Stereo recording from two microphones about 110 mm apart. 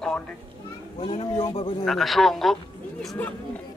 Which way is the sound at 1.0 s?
60° left (ahead or behind).